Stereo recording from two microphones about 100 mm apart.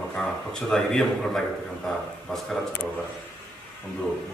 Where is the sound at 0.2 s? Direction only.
5° left (ahead or behind).